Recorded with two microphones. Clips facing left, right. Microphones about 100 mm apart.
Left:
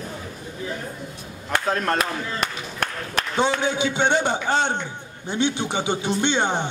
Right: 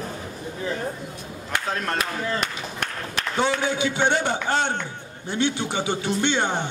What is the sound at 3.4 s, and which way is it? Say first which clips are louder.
Speech: left 1 dB; 20° left (ahead or behind).